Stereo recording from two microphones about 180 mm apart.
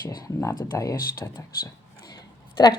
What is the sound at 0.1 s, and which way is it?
A woman's voice, 20° left (ahead or behind).